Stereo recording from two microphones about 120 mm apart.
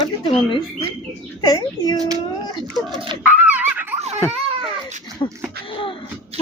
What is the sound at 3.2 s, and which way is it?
Fowl, 10° right (ahead or behind).